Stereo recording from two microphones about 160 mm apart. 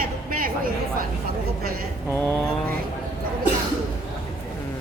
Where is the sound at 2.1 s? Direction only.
15° left (ahead or behind).